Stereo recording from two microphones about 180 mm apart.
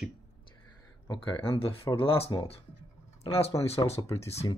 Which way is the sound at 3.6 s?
35° left (ahead or behind).